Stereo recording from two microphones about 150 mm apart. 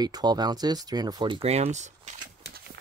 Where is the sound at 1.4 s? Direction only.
45° right (ahead or behind).